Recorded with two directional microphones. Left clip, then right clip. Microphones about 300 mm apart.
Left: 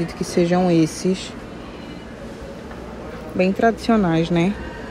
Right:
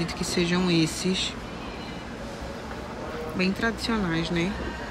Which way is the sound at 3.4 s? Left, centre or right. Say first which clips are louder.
Left 10 dB; centre.